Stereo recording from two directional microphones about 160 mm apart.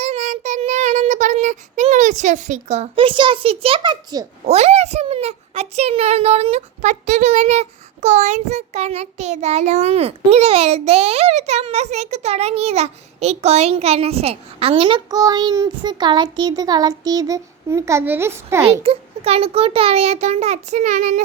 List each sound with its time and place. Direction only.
0.0 s child singing: 45° right (ahead or behind)
4.4 s a child's voice: 40° right (ahead or behind); by 18.6 s 15° right (ahead or behind)
18.7 s a child's voice: 40° right (ahead or behind)